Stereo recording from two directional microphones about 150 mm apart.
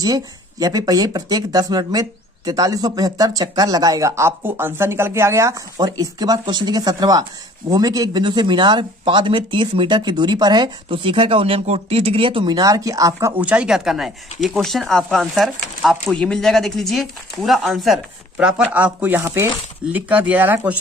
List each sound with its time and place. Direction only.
0.0 s speech: 25° right (ahead or behind)
13.4 s speech: 5° right (ahead or behind)